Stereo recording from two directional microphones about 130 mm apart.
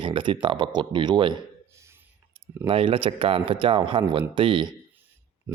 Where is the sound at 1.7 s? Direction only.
20° right (ahead or behind).